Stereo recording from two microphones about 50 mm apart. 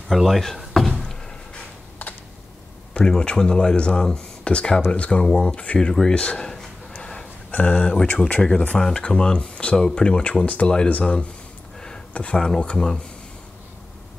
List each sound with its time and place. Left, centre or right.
0.1 s speech: centre
1.5 s a sound: left
3.1 s speech: centre
7.0 s a sound: centre
7.5 s speech: left
8.7 s speech: centre
9.0 s speech: left
12.1 s speech: left
12.4 s speech: centre